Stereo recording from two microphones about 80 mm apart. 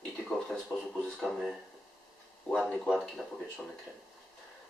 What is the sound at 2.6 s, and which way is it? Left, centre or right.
Speech, centre.